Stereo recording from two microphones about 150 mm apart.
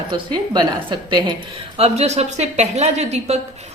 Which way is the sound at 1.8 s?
45° right (ahead or behind).